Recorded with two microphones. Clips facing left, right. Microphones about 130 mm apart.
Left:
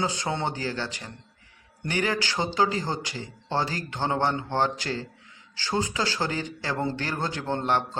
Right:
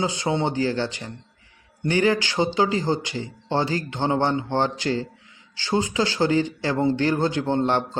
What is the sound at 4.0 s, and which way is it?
A man's voice, 25° right (ahead or behind).